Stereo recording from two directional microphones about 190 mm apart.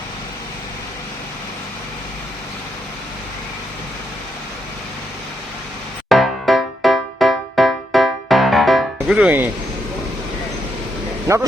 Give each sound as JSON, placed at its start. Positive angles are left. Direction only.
{"t": 6.1, "sound": "music", "side_deg": 0}